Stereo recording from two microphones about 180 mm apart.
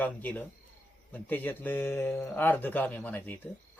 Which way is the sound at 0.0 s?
10° left (ahead or behind).